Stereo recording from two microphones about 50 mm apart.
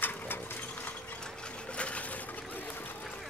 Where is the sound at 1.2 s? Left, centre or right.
Left.